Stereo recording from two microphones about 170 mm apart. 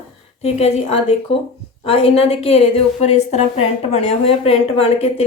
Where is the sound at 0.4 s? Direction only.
35° left (ahead or behind).